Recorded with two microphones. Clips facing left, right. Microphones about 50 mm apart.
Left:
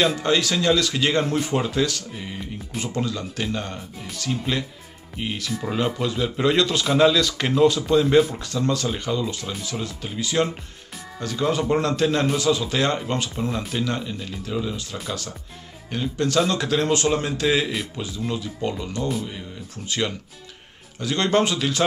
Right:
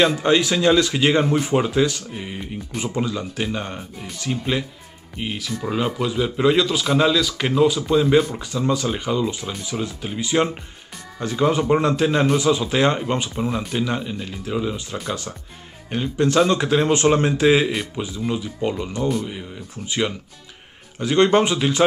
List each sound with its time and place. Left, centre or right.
0.2 s speech: centre
5.1 s speech: centre
13.4 s speech: centre; by 21.8 s right